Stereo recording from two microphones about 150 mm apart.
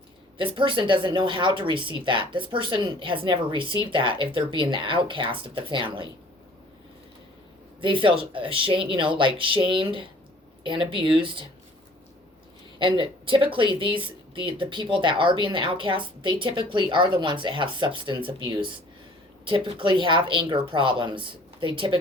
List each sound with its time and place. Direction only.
0.3 s speech: 35° right (ahead or behind)
7.8 s speech: 35° right (ahead or behind)
12.8 s speech: 35° right (ahead or behind)